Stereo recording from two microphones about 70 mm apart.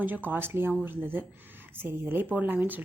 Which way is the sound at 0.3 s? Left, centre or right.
Right.